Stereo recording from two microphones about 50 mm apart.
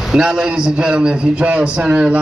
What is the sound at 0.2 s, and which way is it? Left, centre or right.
Speech, right.